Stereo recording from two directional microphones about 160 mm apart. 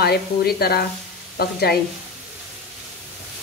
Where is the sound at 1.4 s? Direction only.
80° left.